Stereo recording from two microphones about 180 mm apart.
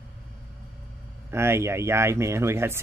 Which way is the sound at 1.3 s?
15° right (ahead or behind).